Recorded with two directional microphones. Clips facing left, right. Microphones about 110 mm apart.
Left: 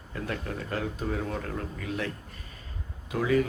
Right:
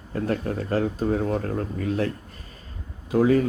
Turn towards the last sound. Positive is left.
turn(degrees=-40)  # may be behind; listen again after turning